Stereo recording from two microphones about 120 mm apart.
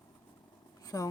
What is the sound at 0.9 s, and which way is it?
Speech, 30° left (ahead or behind).